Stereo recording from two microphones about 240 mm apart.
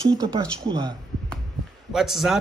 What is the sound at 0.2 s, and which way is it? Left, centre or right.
Speech, centre.